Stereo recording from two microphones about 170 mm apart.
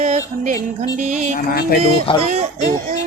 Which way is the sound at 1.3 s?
60° left (ahead or behind).